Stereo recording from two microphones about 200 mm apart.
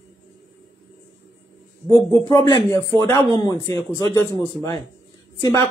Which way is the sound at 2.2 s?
20° left (ahead or behind).